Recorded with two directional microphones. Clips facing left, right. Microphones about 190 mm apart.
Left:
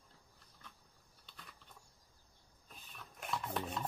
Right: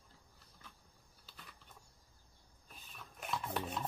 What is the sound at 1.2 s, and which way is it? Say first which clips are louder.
Computer keyboard: even; centre (ahead or behind).